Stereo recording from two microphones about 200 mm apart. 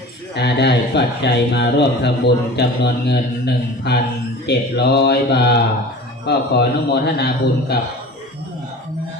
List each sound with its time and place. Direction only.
0.3 s a man's voice: 55° left (ahead or behind)